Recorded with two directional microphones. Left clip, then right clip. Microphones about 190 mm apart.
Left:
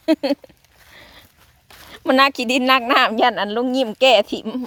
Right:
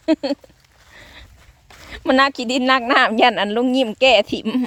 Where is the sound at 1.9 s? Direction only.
5° right (ahead or behind).